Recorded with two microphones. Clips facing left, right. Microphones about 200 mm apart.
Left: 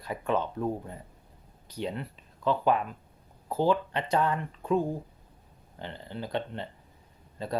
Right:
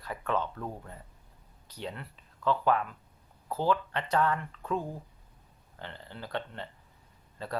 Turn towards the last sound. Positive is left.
turn(degrees=15)  # may be behind; listen again after turning